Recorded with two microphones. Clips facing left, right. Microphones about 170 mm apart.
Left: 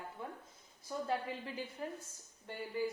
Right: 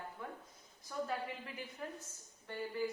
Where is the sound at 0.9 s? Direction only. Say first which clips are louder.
Left 2 dB; 20° left (ahead or behind).